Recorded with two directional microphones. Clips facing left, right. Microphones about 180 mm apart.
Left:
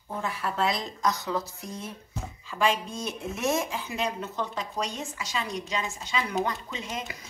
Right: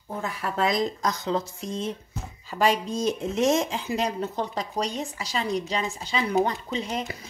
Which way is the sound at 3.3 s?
25° right (ahead or behind).